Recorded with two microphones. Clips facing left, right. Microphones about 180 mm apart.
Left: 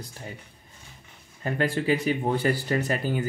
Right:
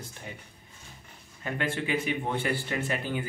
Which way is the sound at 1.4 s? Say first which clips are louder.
Left 5 dB; 40° left (ahead or behind).